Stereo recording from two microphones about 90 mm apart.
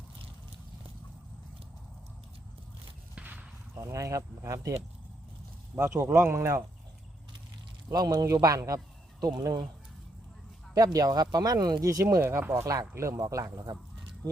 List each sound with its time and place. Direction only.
3.2 s a sound: 15° right (ahead or behind)
3.8 s speech: 35° right (ahead or behind)
5.7 s speech: 30° right (ahead or behind)
7.9 s speech: 45° right (ahead or behind)
10.8 s speech: 45° right (ahead or behind)
13.3 s speech: 45° right (ahead or behind)